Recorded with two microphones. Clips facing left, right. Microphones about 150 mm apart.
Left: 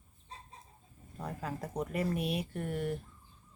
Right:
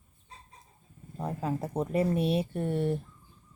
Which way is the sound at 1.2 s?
25° right (ahead or behind).